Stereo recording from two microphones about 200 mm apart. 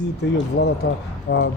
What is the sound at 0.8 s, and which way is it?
Speech, 50° left (ahead or behind).